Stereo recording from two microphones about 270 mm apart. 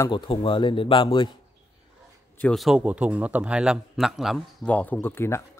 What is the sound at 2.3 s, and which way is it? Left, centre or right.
A man's voice, centre.